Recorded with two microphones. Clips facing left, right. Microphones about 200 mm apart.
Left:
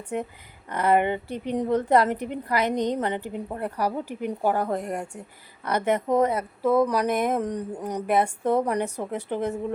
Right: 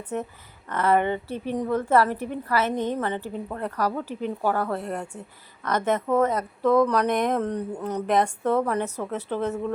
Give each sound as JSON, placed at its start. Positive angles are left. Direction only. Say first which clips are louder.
{"t": 0.7, "sound": "a woman's voice", "louder": "even", "side_deg": 15}